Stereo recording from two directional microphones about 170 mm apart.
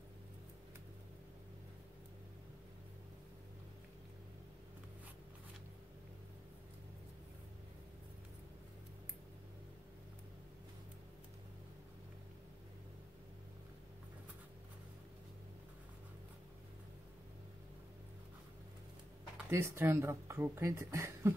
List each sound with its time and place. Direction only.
19.5 s speech: 15° right (ahead or behind)